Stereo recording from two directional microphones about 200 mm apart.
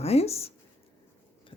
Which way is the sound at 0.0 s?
30° left (ahead or behind).